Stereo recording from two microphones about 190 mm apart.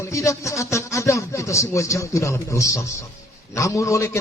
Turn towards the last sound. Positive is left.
turn(degrees=15)  # may be behind; listen again after turning